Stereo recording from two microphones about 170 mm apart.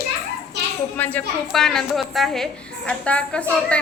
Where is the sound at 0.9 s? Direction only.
10° left (ahead or behind).